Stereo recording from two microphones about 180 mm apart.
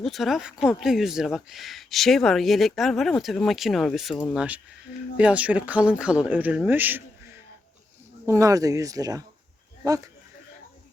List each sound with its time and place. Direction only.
0.0 s speech: centre (ahead or behind); by 10.1 s 20° right (ahead or behind)